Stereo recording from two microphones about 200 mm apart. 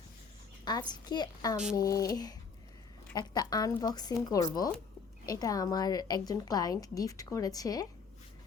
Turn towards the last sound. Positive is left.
turn(degrees=20)  # may be behind; listen again after turning